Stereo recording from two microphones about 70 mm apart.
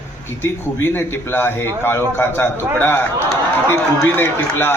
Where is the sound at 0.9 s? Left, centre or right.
Left.